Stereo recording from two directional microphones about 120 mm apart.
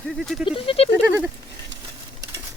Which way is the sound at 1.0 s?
15° right (ahead or behind).